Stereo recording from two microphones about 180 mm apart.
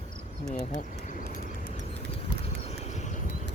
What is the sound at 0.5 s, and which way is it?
Speech, 45° left (ahead or behind).